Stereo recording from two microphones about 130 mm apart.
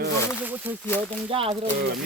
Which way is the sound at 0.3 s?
15° right (ahead or behind).